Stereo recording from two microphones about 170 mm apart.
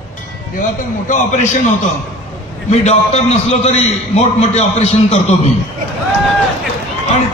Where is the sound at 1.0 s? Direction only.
45° left (ahead or behind).